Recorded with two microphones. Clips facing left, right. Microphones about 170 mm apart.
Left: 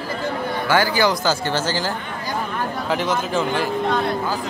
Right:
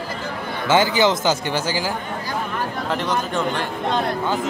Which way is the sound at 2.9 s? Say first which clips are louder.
Left 2 dB; centre (ahead or behind).